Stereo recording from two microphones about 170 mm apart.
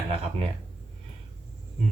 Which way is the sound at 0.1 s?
35° right (ahead or behind).